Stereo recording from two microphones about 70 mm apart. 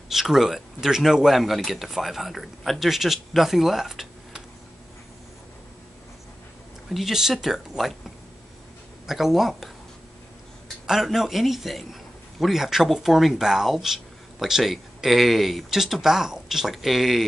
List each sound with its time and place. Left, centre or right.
0.1 s a man's voice: centre
6.9 s a man's voice: centre
9.0 s a man's voice: centre
10.9 s a man's voice: centre